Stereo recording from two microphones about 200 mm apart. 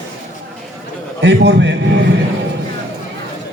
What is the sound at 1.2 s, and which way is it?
Speech, 60° right (ahead or behind).